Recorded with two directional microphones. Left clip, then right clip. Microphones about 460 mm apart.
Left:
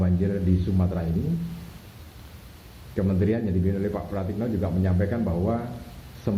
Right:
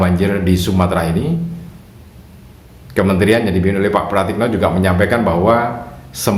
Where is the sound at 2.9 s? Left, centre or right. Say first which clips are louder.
Right 13 dB; centre.